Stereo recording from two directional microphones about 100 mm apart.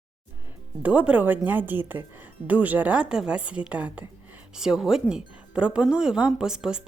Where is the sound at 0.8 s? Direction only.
15° right (ahead or behind).